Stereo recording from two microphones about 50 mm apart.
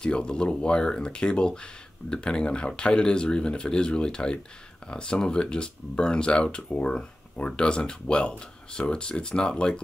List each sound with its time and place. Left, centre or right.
0.0 s speech: centre